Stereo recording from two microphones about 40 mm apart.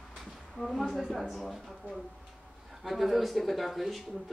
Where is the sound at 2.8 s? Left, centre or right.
Centre.